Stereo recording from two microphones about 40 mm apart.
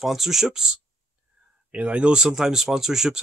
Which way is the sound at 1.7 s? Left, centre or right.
Right.